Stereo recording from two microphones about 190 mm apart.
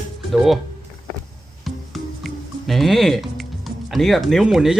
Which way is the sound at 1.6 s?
Centre (ahead or behind).